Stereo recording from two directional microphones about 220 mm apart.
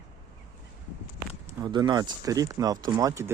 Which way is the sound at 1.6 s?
20° right (ahead or behind).